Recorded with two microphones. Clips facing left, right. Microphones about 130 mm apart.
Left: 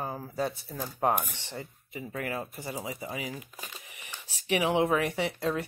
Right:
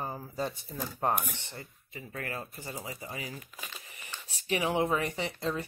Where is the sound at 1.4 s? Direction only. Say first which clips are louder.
Left 5 dB; 15° left (ahead or behind).